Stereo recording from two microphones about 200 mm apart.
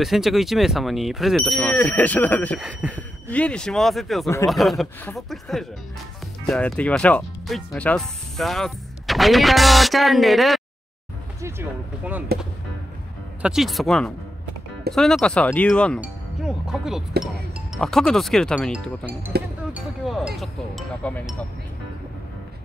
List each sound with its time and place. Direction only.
0.0 s speech: centre (ahead or behind)
12.0 s speech: 10° right (ahead or behind)
13.4 s speech: centre (ahead or behind)
19.3 s speech: 50° right (ahead or behind)
19.7 s speech: 5° right (ahead or behind)